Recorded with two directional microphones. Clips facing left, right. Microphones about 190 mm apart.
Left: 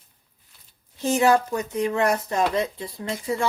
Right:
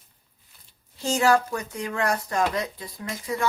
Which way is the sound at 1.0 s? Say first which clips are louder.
Left 2 dB; 20° left (ahead or behind).